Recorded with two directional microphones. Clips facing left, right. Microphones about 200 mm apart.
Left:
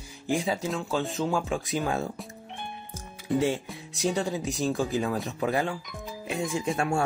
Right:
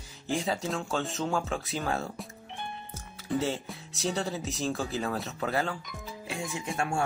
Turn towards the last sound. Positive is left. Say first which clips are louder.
# left 4 dB
turn(degrees=25)  # may be behind; listen again after turning